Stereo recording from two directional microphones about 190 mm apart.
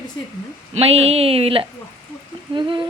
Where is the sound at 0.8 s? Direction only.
30° right (ahead or behind).